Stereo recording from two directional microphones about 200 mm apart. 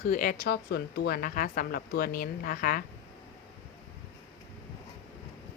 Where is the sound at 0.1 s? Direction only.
45° left (ahead or behind).